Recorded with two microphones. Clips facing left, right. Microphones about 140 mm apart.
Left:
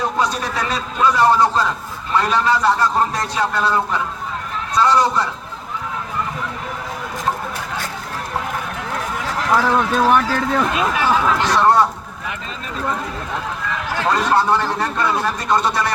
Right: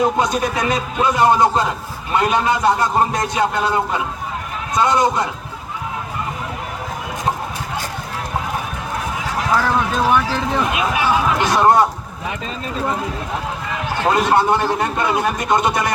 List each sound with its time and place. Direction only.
0.0 s a man's voice: 15° right (ahead or behind)
9.5 s speech: centre (ahead or behind)
10.3 s a man's voice: 15° right (ahead or behind)
14.0 s a man's voice: 15° right (ahead or behind)